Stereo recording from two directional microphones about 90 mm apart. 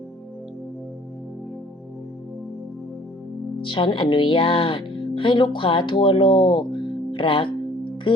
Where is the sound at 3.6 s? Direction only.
65° left (ahead or behind).